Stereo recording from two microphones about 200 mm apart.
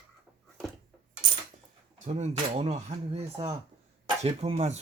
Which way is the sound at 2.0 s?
30° right (ahead or behind).